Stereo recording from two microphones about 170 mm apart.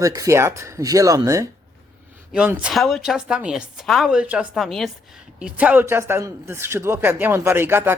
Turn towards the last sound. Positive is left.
turn(degrees=-15)  # may be behind; listen again after turning